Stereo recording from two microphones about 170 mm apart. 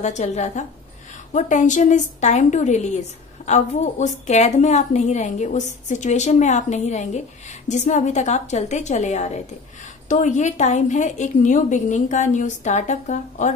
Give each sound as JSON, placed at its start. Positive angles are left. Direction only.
{"t": 0.0, "sound": "a woman's voice", "side_deg": 40}